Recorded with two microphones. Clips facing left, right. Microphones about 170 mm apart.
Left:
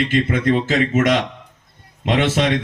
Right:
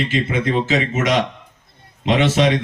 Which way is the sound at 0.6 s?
55° left (ahead or behind).